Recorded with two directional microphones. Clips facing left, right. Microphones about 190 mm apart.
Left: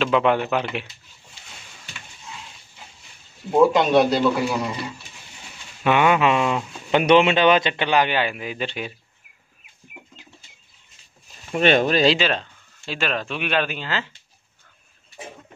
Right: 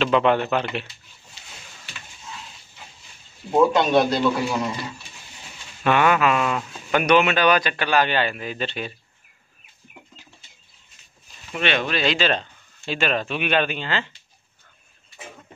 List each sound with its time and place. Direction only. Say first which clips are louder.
0.0 s a man's voice: even; 5° left (ahead or behind)
3.5 s a man's voice: left 1 dB; 5° left (ahead or behind)
5.9 s speech: left 1 dB; 20° left (ahead or behind)
11.5 s speech: left 6 dB; 40° left (ahead or behind)
12.2 s speech: right 1 dB; 5° left (ahead or behind)